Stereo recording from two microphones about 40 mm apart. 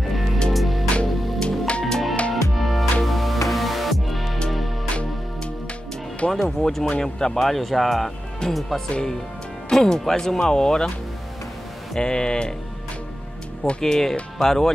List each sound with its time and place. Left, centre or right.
0.5 s music: centre
0.9 s music: left
2.3 s music: centre
6.3 s speech: centre
7.3 s speech: centre
12.0 s speech: centre
13.7 s speech: centre